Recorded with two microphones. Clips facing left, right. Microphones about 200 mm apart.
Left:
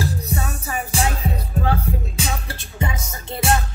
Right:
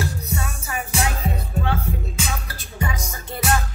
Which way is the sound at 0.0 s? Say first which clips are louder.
Left 2 dB; 30° left (ahead or behind).